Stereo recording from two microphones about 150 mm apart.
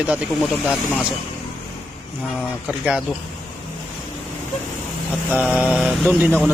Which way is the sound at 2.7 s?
5° right (ahead or behind).